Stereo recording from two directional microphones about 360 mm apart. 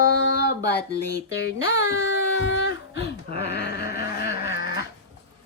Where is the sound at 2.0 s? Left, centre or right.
Left.